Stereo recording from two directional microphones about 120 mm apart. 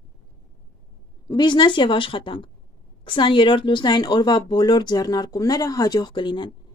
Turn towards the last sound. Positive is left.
turn(degrees=40)  # may be behind; listen again after turning